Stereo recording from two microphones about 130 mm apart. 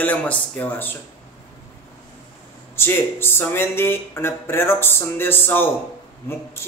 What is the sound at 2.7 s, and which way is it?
Speech, 20° left (ahead or behind).